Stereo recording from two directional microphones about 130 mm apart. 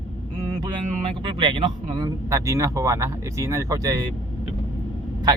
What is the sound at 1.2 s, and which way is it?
Speech, 40° right (ahead or behind).